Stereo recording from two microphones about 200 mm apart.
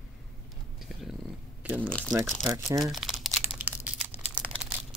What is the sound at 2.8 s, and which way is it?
Crumpling, centre (ahead or behind).